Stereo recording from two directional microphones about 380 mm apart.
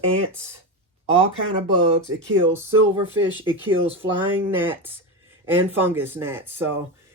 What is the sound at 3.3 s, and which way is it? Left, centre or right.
Speech, centre.